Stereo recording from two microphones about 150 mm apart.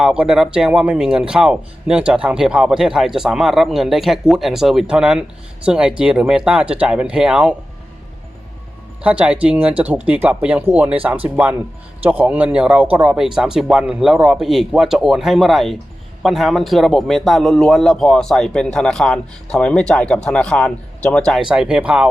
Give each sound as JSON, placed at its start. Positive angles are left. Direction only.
{"t": 0.0, "sound": "speech", "side_deg": -5}
{"t": 9.0, "sound": "speech", "side_deg": -10}
{"t": 21.5, "sound": "speech", "side_deg": -5}